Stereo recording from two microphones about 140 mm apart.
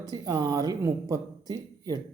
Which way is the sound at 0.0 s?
30° right (ahead or behind).